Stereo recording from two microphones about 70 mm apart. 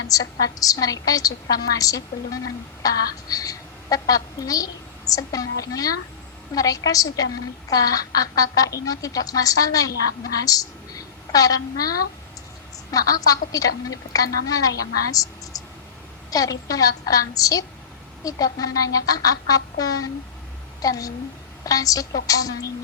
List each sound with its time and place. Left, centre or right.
0.1 s a woman's voice: left